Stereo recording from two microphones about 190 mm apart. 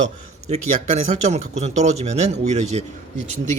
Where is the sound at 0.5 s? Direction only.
35° right (ahead or behind).